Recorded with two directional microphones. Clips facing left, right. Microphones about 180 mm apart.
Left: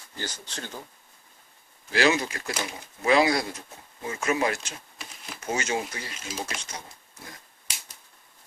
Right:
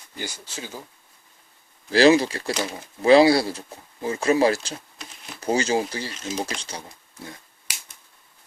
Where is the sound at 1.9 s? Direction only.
35° right (ahead or behind).